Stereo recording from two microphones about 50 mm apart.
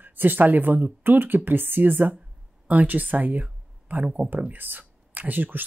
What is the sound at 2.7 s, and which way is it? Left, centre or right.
Speech, right.